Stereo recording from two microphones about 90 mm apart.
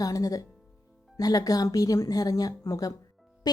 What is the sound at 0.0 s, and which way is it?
A woman's voice, 40° left (ahead or behind).